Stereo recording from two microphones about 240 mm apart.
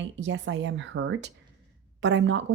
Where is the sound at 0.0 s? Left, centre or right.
Right.